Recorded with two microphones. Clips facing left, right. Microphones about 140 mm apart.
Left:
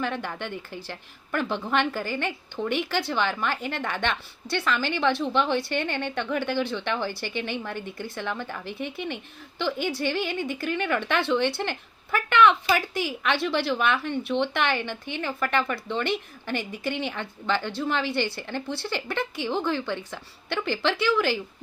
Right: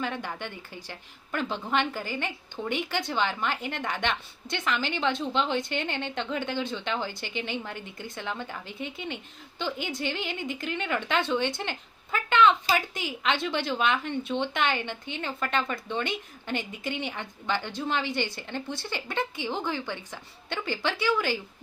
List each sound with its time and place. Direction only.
0.0 s a woman's voice: 15° right (ahead or behind)